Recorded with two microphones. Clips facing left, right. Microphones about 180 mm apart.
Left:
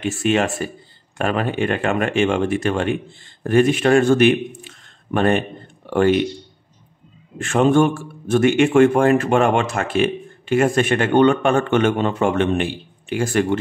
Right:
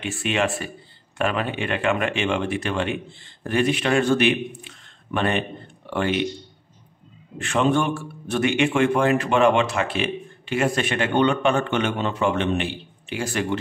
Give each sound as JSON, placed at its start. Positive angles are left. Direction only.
{"t": 0.0, "sound": "speech", "side_deg": 45}
{"t": 7.3, "sound": "speech", "side_deg": 45}